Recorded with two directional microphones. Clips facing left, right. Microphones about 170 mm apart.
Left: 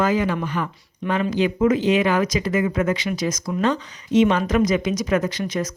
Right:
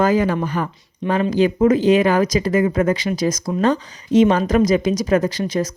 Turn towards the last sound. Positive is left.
turn(degrees=-30)  # may be behind; listen again after turning